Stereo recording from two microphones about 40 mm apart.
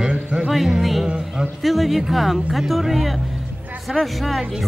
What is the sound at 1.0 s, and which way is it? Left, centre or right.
Speech, right.